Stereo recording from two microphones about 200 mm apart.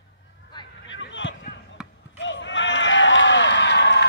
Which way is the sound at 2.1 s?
65° left (ahead or behind).